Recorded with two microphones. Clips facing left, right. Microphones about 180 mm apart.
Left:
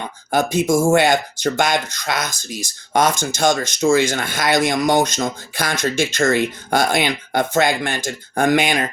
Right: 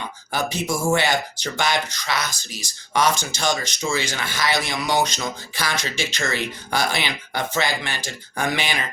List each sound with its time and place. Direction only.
0.3 s speech: 50° left (ahead or behind)